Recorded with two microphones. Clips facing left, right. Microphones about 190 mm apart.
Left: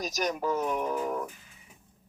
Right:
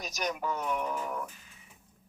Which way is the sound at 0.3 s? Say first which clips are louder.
Left 3 dB; 40° left (ahead or behind).